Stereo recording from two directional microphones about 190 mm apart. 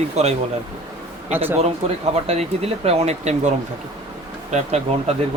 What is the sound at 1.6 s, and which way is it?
Speech, 35° right (ahead or behind).